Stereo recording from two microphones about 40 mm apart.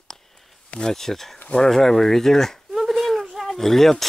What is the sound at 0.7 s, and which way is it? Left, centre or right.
Speech, centre.